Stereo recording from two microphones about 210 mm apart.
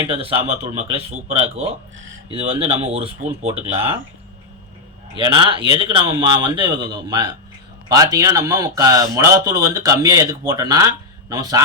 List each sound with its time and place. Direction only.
0.1 s speech: 25° right (ahead or behind)
5.1 s a man's voice: 20° right (ahead or behind)